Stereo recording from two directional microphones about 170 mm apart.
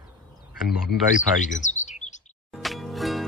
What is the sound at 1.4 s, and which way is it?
Chirp, 45° left (ahead or behind).